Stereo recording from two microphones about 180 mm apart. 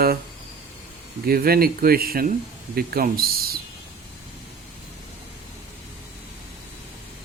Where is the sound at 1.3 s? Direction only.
55° right (ahead or behind).